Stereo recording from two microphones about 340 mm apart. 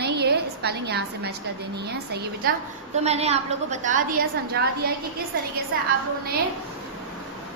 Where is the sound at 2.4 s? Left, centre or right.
Right.